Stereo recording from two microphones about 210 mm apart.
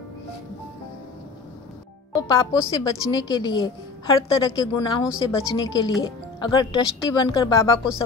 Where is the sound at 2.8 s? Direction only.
20° left (ahead or behind).